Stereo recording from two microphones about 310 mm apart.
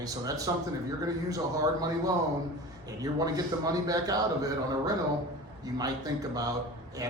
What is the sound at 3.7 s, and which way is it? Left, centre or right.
Speech, centre.